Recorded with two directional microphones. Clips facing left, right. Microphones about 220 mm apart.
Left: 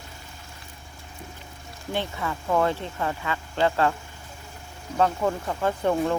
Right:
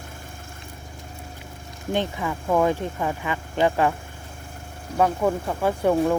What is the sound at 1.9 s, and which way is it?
Speech, 15° right (ahead or behind).